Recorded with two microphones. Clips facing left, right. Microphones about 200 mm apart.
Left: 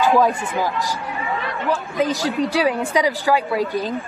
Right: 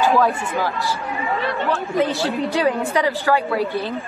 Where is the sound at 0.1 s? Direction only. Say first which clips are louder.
Left 1 dB; 15° left (ahead or behind).